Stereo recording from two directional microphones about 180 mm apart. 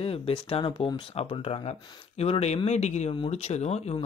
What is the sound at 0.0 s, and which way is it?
Speech, 30° left (ahead or behind).